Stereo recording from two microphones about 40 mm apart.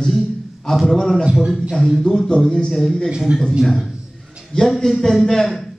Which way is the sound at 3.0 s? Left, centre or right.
Centre.